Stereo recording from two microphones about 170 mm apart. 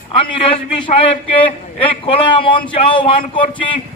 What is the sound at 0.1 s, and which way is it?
A man's voice, 35° left (ahead or behind).